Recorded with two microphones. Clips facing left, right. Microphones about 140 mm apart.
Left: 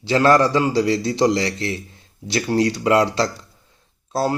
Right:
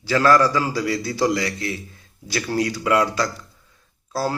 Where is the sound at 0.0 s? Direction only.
25° left (ahead or behind).